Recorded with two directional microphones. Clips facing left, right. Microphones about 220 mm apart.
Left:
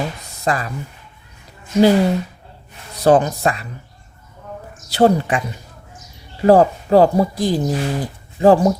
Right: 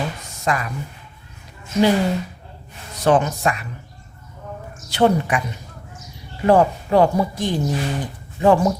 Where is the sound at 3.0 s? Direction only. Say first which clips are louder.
Left 3 dB; 35° left (ahead or behind).